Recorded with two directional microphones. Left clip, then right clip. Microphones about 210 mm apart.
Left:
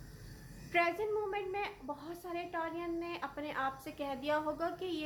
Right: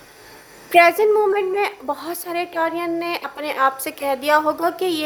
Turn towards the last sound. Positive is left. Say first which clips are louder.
# right 17 dB
turn(degrees=-55)  # may be behind; listen again after turning